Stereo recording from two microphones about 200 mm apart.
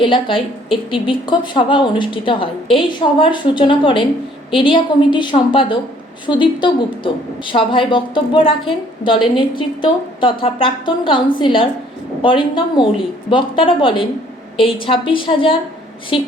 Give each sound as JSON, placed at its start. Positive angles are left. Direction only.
{"t": 0.0, "sound": "a woman's voice", "side_deg": 25}